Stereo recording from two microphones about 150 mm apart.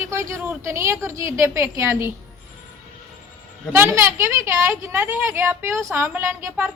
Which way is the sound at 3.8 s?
20° right (ahead or behind).